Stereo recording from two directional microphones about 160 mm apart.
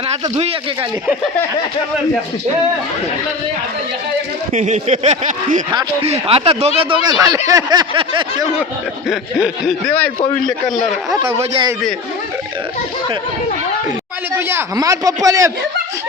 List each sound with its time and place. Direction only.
0.1 s speech: 40° right (ahead or behind)
4.5 s speech: 50° right (ahead or behind)
6.0 s speech: 35° right (ahead or behind)
9.0 s snicker: centre (ahead or behind)
14.3 s speech: 15° right (ahead or behind)